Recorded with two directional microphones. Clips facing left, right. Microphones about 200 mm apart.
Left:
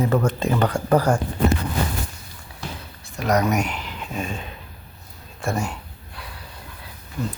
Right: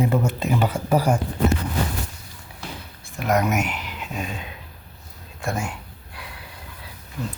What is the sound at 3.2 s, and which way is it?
Speech, centre (ahead or behind).